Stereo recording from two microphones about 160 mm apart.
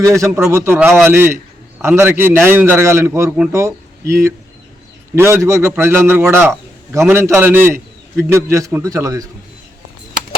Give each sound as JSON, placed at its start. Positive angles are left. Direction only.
{"t": 0.1, "sound": "a man's voice", "side_deg": -20}